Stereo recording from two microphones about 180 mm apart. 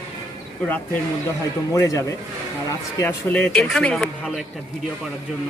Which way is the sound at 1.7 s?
20° left (ahead or behind).